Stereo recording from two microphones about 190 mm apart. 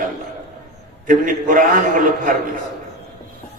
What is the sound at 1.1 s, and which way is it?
A man's voice, 45° right (ahead or behind).